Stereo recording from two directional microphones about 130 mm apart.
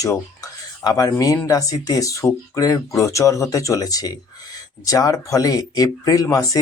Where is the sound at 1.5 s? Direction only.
25° left (ahead or behind).